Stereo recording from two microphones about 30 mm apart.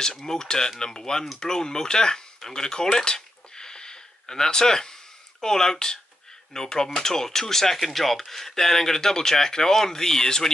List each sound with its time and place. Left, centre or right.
0.2 s speech: left